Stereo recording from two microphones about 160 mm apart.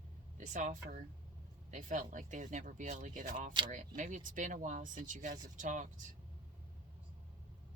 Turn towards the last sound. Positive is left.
turn(degrees=-55)  # may be behind; listen again after turning